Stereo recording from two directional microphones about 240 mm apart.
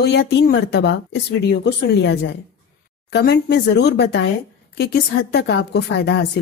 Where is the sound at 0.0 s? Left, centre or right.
Left.